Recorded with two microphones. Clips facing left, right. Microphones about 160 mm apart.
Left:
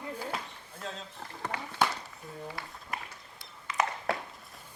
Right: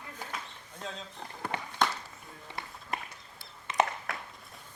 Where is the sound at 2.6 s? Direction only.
25° right (ahead or behind).